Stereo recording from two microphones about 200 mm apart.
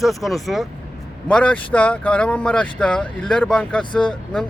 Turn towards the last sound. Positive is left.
turn(degrees=5)  # may be behind; listen again after turning